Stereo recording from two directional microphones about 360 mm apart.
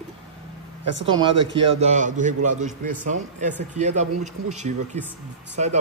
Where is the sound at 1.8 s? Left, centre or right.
Centre.